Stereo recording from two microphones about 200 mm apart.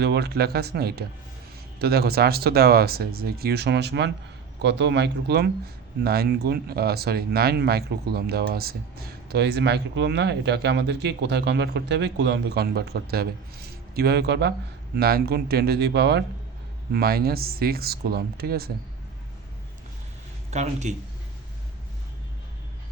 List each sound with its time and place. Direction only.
0.0 s speech: 55° right (ahead or behind)
20.5 s speech: 35° right (ahead or behind)